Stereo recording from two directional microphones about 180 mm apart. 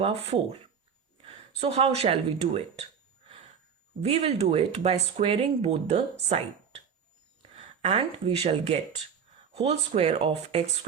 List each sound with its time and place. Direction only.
1.2 s speech: 30° right (ahead or behind)
4.0 s speech: 35° right (ahead or behind)
7.8 s speech: 35° right (ahead or behind)